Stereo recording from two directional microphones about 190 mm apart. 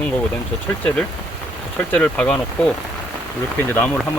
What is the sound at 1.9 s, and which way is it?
Speech, 5° left (ahead or behind).